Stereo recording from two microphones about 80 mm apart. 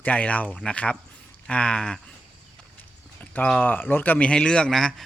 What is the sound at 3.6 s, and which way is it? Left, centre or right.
A man's voice, left.